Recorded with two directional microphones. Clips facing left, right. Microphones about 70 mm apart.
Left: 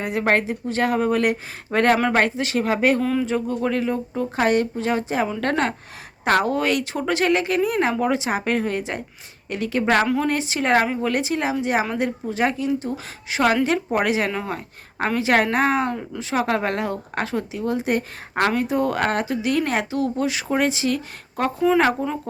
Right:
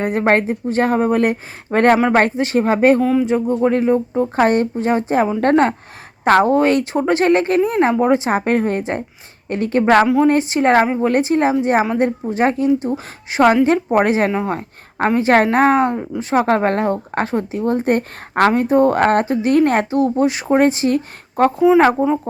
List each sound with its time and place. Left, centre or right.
0.0 s speech: right
3.0 s speech: centre
3.2 s speech: right